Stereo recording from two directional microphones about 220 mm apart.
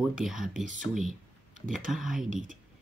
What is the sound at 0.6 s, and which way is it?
Speech, 35° right (ahead or behind).